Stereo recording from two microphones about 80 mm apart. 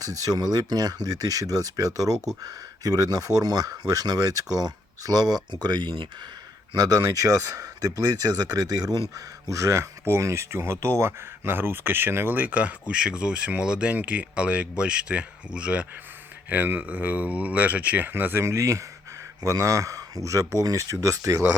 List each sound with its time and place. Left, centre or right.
0.0 s speech: right
6.7 s speech: right